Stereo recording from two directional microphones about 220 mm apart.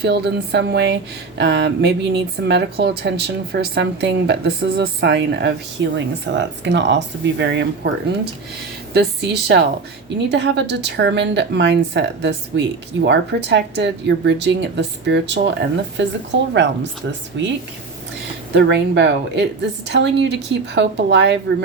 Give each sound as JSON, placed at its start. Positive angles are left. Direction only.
{"t": 0.0, "sound": "speech", "side_deg": -50}
{"t": 8.9, "sound": "speech", "side_deg": -50}
{"t": 18.5, "sound": "speech", "side_deg": -50}